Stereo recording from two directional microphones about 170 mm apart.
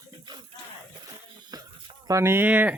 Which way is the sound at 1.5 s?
20° right (ahead or behind).